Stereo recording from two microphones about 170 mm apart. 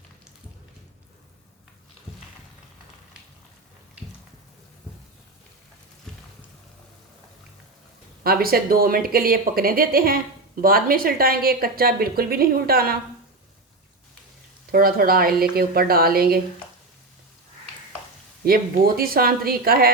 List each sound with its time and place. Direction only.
6.1 s a sound: 5° left (ahead or behind)
8.2 s speech: 60° right (ahead or behind)
14.7 s speech: 60° right (ahead or behind)
18.4 s speech: 60° right (ahead or behind)